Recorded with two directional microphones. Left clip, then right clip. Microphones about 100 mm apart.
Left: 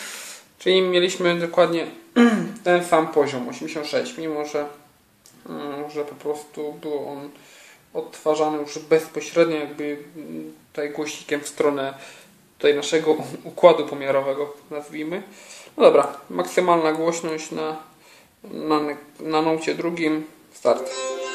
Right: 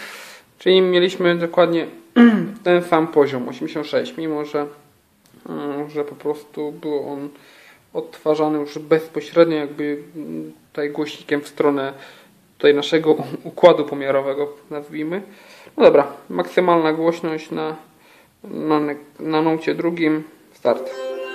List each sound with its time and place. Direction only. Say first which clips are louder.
0.0 s speech: right 1 dB; 45° right (ahead or behind)
21.0 s tabla: right 1 dB; 30° left (ahead or behind)